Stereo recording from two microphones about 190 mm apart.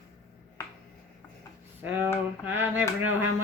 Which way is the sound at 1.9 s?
10° right (ahead or behind).